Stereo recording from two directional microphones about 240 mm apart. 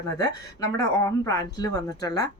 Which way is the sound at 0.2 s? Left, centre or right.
Centre.